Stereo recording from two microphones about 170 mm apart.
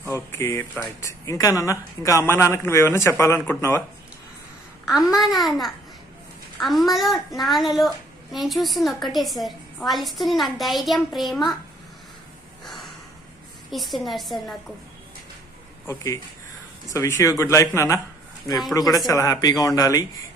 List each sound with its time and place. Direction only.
0.0 s speech: 15° left (ahead or behind)
5.1 s a woman's voice: centre (ahead or behind)
13.7 s a woman's voice: centre (ahead or behind)
16.9 s speech: 15° left (ahead or behind)